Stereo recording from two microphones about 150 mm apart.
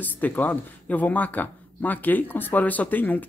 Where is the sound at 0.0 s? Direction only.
10° left (ahead or behind).